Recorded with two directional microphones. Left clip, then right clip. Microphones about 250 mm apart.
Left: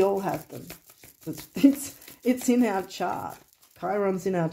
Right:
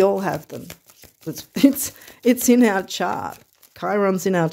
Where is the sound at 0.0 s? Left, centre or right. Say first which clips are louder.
Right 6 dB; right.